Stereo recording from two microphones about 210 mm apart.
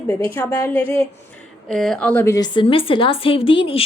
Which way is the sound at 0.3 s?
10° left (ahead or behind).